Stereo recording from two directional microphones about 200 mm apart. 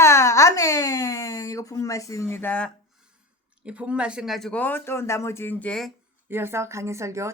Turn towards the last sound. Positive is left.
turn(degrees=-15)  # may be behind; listen again after turning